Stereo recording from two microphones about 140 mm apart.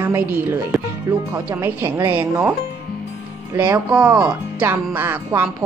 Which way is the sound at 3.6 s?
15° right (ahead or behind).